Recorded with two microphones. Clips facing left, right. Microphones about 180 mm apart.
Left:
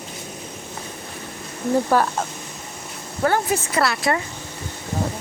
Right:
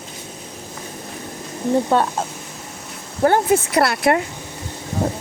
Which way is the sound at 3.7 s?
60° right (ahead or behind).